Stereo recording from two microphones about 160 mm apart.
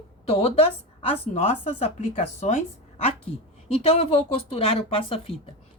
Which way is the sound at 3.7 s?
40° left (ahead or behind).